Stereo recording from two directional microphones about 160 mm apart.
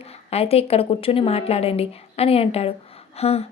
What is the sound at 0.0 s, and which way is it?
A woman's voice, 40° left (ahead or behind).